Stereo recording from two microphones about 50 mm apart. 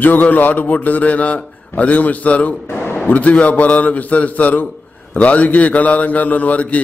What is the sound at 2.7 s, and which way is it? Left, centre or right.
A man's voice, left.